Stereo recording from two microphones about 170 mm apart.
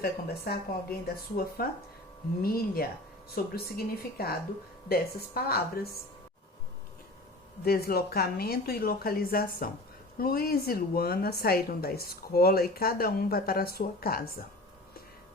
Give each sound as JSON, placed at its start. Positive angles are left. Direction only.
{"t": 0.0, "sound": "a woman's voice", "side_deg": 65}
{"t": 7.6, "sound": "a woman's voice", "side_deg": 65}